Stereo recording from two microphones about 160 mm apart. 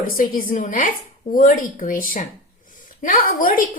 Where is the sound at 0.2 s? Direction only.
65° left (ahead or behind).